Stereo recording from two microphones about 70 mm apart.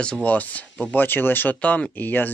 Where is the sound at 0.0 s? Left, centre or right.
Centre.